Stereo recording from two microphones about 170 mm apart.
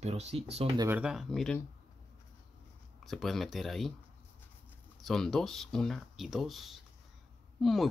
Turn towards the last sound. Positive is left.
turn(degrees=0)  # may be behind; listen again after turning